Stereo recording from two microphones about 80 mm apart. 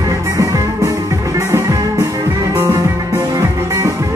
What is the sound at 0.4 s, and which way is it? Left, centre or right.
Music, right.